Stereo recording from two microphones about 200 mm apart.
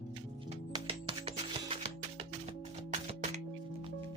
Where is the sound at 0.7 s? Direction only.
25° right (ahead or behind).